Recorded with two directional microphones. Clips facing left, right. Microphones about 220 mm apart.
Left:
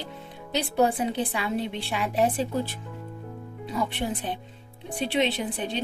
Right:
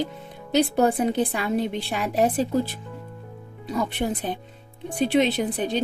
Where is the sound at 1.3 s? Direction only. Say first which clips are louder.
Right 4 dB; 45° right (ahead or behind).